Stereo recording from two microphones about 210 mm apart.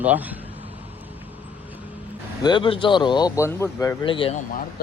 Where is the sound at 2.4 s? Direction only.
25° left (ahead or behind).